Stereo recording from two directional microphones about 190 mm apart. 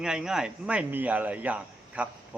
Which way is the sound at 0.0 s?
5° right (ahead or behind).